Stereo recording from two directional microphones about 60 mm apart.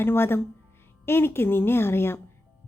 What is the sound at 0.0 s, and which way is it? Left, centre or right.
A woman's voice, left.